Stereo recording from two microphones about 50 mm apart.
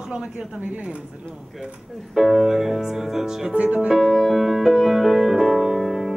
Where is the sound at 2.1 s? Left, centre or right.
Centre.